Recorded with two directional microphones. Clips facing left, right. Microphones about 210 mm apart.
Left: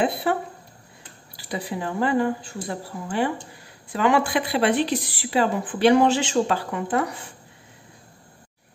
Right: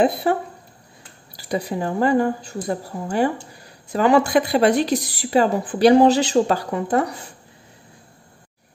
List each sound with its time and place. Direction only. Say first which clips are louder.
0.0 s a woman's voice: right 4 dB; 40° right (ahead or behind)